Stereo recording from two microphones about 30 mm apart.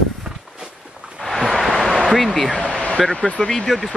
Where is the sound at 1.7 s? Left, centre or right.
Centre.